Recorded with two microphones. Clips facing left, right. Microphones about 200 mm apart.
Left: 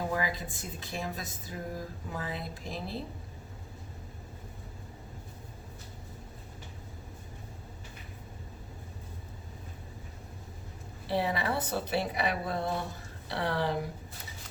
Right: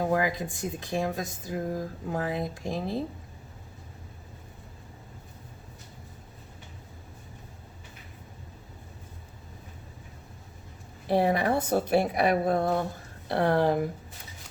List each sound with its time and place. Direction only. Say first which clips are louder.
0.0 s speech: right 6 dB; 50° right (ahead or behind)
0.5 s speech: right 8 dB; 15° right (ahead or behind)
0.9 s a woman's voice: right 7 dB; 45° right (ahead or behind)
2.3 s speech: right 7 dB; 20° right (ahead or behind)
11.0 s a woman's voice: right 6 dB; 50° right (ahead or behind)